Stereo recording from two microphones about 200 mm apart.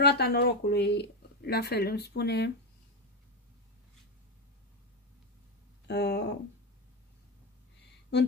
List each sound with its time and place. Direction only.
0.0 s speech: 55° left (ahead or behind)
5.9 s speech: 55° left (ahead or behind)